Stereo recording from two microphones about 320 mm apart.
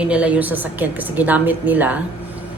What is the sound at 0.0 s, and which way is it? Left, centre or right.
A woman's voice, centre.